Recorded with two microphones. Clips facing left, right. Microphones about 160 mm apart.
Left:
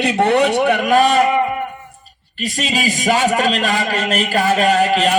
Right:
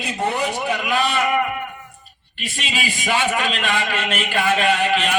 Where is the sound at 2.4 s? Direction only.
40° left (ahead or behind).